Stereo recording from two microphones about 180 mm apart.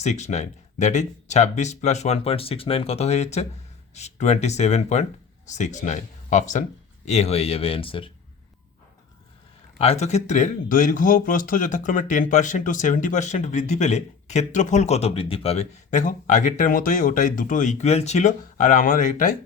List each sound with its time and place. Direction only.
0.0 s speech: 40° left (ahead or behind)
9.7 s speech: 35° left (ahead or behind)